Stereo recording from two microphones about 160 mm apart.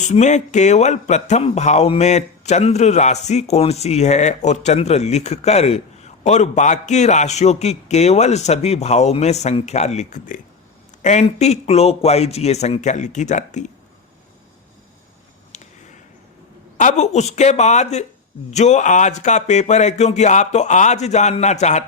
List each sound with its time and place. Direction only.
0.0 s speech: 45° left (ahead or behind)
15.5 s a sound: 45° left (ahead or behind)
16.7 s speech: 45° left (ahead or behind)